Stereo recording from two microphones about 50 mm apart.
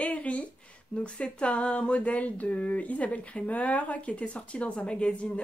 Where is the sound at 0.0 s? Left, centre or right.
Left.